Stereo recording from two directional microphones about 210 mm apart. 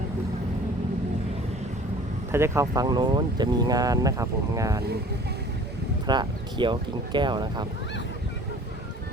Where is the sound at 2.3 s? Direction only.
10° right (ahead or behind).